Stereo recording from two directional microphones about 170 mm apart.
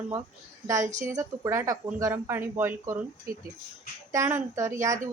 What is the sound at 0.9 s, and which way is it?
Speech, 45° right (ahead or behind).